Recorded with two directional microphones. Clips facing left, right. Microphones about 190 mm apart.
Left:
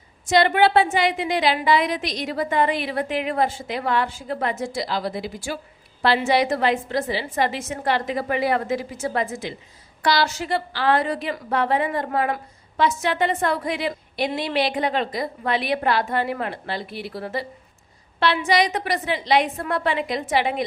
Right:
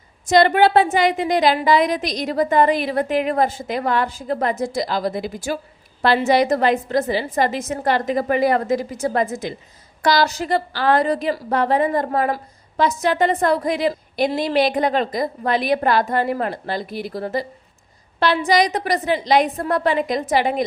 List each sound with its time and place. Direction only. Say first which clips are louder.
0.3 s a woman's voice: right 3 dB; 40° right (ahead or behind)